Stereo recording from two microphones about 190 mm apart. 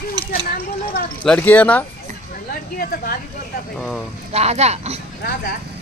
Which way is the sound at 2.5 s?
50° left (ahead or behind).